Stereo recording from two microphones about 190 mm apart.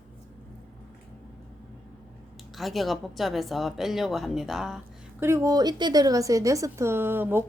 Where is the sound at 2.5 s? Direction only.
Centre (ahead or behind).